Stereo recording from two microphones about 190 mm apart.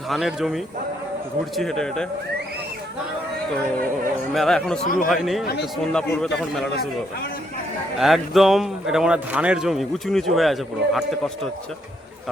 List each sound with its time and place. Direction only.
0.1 s a man's voice: centre (ahead or behind)
4.4 s a man's voice: centre (ahead or behind)
4.8 s speech: 45° left (ahead or behind)
5.0 s a man's voice: centre (ahead or behind)
7.9 s a man's voice: centre (ahead or behind)